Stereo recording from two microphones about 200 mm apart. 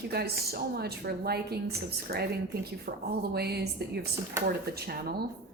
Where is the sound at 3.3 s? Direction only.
55° right (ahead or behind).